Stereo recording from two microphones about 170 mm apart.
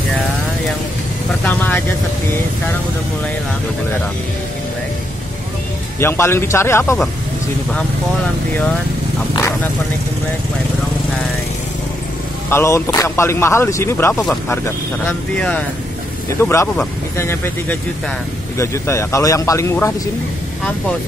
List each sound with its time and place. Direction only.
1.4 s vehicle: 10° left (ahead or behind)
5.9 s speech: 15° left (ahead or behind)
12.4 s speech: 15° left (ahead or behind)